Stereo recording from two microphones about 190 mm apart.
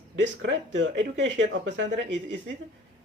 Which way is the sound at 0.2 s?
75° right (ahead or behind).